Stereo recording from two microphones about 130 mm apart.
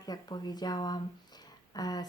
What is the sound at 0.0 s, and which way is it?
Speech, 30° left (ahead or behind).